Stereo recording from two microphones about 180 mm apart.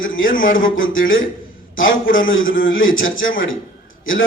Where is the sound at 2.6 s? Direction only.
90° left.